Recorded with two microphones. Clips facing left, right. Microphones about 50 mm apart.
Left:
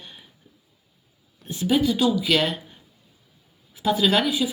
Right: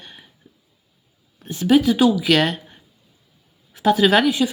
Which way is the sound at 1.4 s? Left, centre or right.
Right.